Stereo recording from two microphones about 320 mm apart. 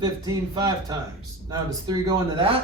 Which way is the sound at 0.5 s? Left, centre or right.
Centre.